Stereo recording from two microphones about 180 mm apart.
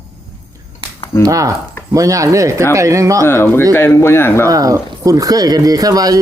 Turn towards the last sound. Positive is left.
turn(degrees=-20)  # may be behind; listen again after turning